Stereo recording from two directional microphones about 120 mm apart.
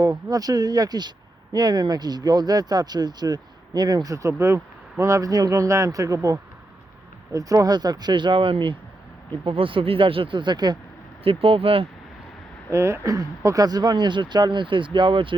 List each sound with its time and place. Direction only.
0.0 s speech: 30° right (ahead or behind)
11.2 s speech: 50° right (ahead or behind)
12.7 s speech: 20° right (ahead or behind); by 15.4 s 45° right (ahead or behind)